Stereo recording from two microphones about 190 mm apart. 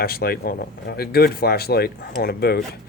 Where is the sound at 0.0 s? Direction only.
55° left (ahead or behind).